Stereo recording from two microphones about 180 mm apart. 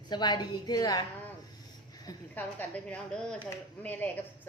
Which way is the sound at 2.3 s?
10° left (ahead or behind).